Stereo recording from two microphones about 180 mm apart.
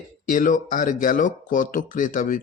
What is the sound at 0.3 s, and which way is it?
Speech, 45° left (ahead or behind).